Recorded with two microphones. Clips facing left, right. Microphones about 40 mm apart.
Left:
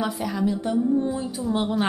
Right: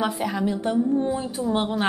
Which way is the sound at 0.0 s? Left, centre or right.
Right.